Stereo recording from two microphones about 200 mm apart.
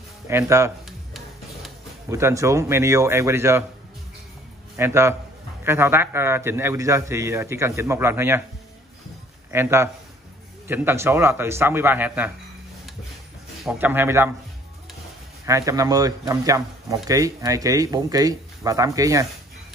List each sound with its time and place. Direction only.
0.3 s speech: 15° right (ahead or behind)
0.8 s music: centre (ahead or behind)
2.0 s speech: 15° right (ahead or behind)
4.7 s speech: 15° right (ahead or behind)
9.5 s speech: 10° right (ahead or behind)
13.7 s speech: 10° right (ahead or behind)
15.4 s speech: 15° right (ahead or behind)